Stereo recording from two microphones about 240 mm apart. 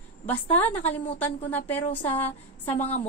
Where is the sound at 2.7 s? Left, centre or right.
Left.